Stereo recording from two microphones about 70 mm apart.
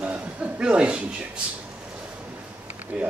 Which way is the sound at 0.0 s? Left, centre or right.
Centre.